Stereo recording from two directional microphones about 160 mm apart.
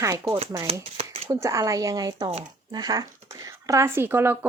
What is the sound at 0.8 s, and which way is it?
Speech, 40° right (ahead or behind).